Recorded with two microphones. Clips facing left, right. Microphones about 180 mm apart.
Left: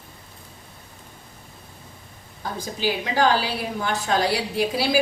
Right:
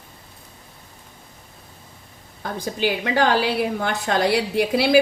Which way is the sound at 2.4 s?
60° right (ahead or behind).